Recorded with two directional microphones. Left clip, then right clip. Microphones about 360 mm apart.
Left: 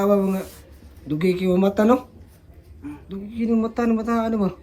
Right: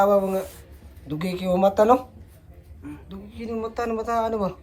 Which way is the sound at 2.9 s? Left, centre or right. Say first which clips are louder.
Left 5 dB; centre.